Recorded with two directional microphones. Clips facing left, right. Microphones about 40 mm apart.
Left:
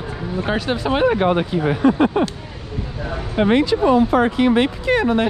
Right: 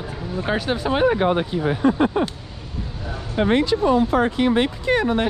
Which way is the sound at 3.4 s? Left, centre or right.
Left.